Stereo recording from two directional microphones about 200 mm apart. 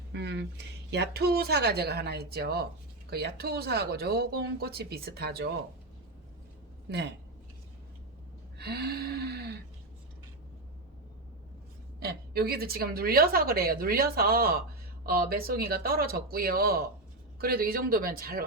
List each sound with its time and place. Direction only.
0.1 s a woman's voice: 60° right (ahead or behind)
8.5 s a sound: 55° right (ahead or behind)
11.9 s a woman's voice: 50° right (ahead or behind)